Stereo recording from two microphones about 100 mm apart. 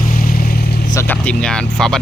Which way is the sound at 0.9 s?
20° left (ahead or behind).